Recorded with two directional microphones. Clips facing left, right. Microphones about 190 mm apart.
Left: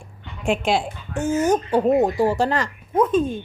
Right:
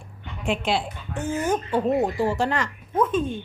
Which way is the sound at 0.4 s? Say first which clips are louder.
Left 4 dB; 45° left (ahead or behind).